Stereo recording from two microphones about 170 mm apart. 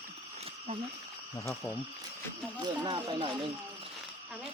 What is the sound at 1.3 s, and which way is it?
Insect, 15° left (ahead or behind).